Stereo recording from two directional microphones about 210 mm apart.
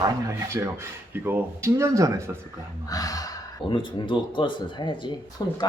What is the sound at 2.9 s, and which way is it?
Speech, 15° left (ahead or behind).